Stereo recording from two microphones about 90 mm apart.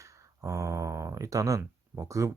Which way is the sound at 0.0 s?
35° right (ahead or behind).